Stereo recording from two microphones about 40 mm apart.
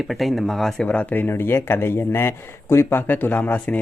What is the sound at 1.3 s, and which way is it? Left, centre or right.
Speech, left.